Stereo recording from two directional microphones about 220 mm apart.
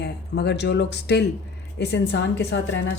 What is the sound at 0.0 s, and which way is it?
A woman's voice, 50° left (ahead or behind).